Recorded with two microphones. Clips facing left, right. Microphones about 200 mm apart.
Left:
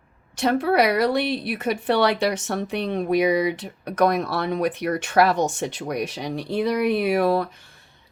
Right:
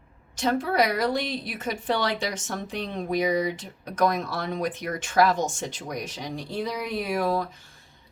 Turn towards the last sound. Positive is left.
turn(degrees=65)  # may be behind; listen again after turning